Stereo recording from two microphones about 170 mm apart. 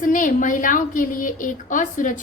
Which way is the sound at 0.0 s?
50° left (ahead or behind).